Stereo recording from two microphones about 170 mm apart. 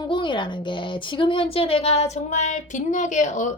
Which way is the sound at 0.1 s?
30° left (ahead or behind).